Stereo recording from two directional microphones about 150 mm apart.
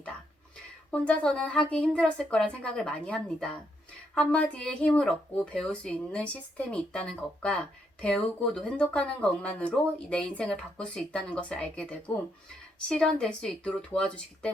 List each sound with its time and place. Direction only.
0.9 s speech: 10° left (ahead or behind)